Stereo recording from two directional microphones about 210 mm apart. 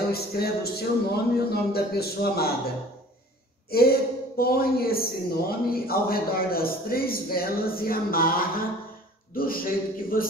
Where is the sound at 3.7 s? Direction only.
45° left (ahead or behind).